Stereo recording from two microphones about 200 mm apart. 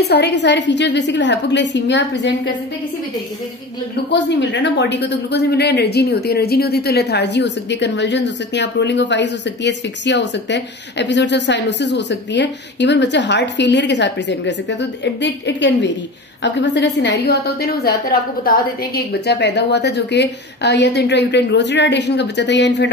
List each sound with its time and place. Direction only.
0.0 s speech: 55° left (ahead or behind)
4.1 s speech: 60° left (ahead or behind)
18.9 s speech: 55° left (ahead or behind)